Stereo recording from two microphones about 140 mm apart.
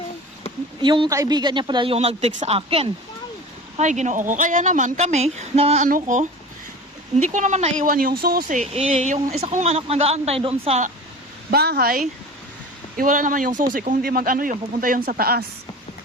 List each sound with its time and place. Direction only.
0.8 s speech: 35° right (ahead or behind)
2.0 s speech: 50° right (ahead or behind)
3.8 s a woman's voice: 55° right (ahead or behind)
5.8 s a woman's voice: 65° right (ahead or behind)
7.9 s speech: 90° right
8.6 s speech: 45° right (ahead or behind)
11.5 s speech: 90° right
13.0 s speech: 70° right (ahead or behind)
13.7 s speech: 90° right